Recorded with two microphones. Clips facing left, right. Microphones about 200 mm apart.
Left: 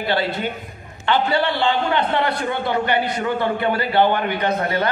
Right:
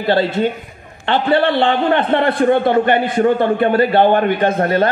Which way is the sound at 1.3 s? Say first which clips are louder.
Right 5 dB; 50° right (ahead or behind).